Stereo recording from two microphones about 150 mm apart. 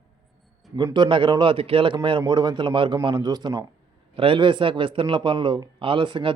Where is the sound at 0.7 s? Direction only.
30° right (ahead or behind).